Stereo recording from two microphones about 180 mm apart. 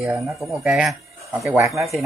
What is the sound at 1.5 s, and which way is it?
Speech, 15° right (ahead or behind).